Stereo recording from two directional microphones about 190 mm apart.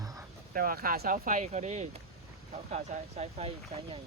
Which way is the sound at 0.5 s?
50° right (ahead or behind).